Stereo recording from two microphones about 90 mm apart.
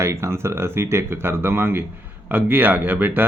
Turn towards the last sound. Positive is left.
turn(degrees=-20)  # may be behind; listen again after turning